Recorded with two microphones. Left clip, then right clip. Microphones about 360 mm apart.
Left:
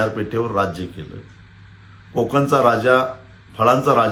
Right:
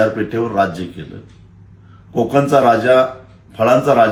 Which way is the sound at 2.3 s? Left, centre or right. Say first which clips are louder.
Right 4 dB; centre.